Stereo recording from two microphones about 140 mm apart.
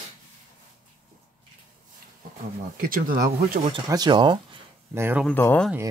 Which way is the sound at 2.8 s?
90° right.